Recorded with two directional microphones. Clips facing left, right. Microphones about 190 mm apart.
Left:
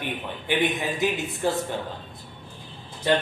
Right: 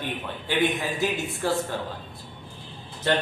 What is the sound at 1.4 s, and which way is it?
Speech, 20° left (ahead or behind).